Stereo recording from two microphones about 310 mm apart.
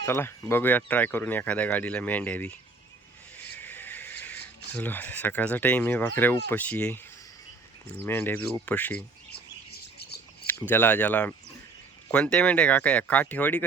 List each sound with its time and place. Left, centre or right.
0.0 s speech: centre
3.4 s a sound: centre
4.7 s speech: centre
8.0 s speech: centre
10.0 s a sound: left
10.4 s speech: centre